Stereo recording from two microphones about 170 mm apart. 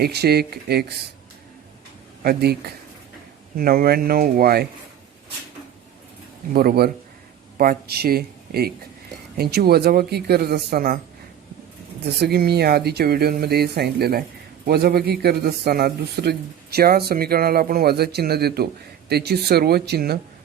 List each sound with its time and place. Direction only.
0.0 s speech: 70° right (ahead or behind)
2.2 s speech: 70° right (ahead or behind)
3.6 s speech: 60° right (ahead or behind)
6.5 s speech: 60° right (ahead or behind)
12.0 s speech: 70° right (ahead or behind)